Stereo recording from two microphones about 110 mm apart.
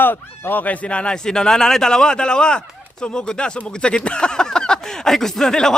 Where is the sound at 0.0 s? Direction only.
20° left (ahead or behind).